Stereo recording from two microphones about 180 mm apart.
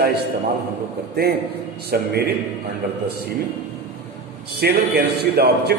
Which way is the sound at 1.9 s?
65° right (ahead or behind).